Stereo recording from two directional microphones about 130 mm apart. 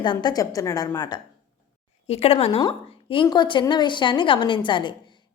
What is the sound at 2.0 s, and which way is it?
A woman's voice, 50° left (ahead or behind).